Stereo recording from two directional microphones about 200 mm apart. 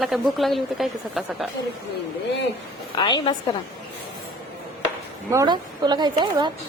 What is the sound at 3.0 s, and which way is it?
Speech, 25° left (ahead or behind).